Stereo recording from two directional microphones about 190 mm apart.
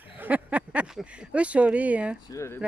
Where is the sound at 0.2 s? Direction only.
10° right (ahead or behind).